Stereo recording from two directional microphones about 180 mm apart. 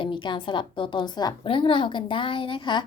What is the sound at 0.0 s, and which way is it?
A woman's voice, 25° left (ahead or behind).